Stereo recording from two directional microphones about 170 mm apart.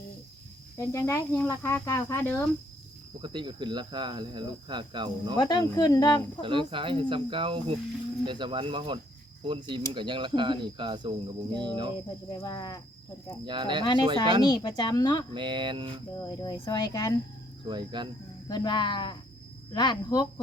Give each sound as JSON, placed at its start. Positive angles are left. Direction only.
{"t": 0.9, "sound": "cricket", "side_deg": 20}
{"t": 3.2, "sound": "speech", "side_deg": -30}
{"t": 5.4, "sound": "speech", "side_deg": 25}
{"t": 6.4, "sound": "speech", "side_deg": -30}
{"t": 12.3, "sound": "speech", "side_deg": 20}
{"t": 13.4, "sound": "speech", "side_deg": -30}
{"t": 14.5, "sound": "speech", "side_deg": 25}
{"t": 15.3, "sound": "speech", "side_deg": -30}
{"t": 16.2, "sound": "speech", "side_deg": 25}
{"t": 17.7, "sound": "speech", "side_deg": -25}
{"t": 18.4, "sound": "speech", "side_deg": 25}